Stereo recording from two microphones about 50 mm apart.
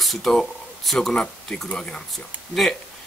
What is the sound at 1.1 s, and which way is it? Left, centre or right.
Speech, centre.